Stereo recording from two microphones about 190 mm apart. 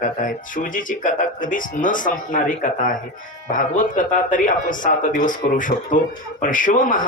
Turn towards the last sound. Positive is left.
turn(degrees=45)  # may be behind; listen again after turning